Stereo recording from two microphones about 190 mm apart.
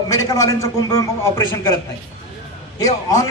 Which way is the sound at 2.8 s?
20° left (ahead or behind).